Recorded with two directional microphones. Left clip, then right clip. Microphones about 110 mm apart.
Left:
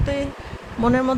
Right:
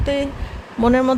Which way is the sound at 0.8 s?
35° right (ahead or behind).